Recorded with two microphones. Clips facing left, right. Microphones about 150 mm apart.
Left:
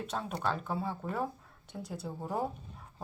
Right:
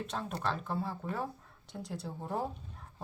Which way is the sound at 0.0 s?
5° left (ahead or behind).